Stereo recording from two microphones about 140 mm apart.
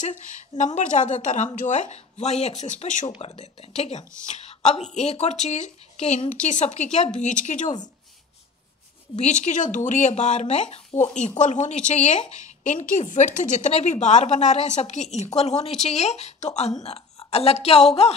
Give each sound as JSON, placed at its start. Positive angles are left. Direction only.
{"t": 0.0, "sound": "speech", "side_deg": 60}
{"t": 3.1, "sound": "speech", "side_deg": 45}
{"t": 9.2, "sound": "speech", "side_deg": 60}